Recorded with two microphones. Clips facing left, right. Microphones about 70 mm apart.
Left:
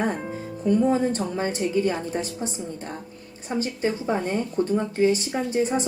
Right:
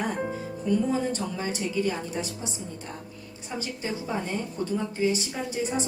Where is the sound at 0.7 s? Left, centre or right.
Left.